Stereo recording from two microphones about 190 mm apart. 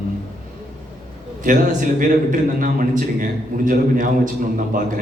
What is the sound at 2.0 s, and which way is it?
A man's voice, 45° right (ahead or behind).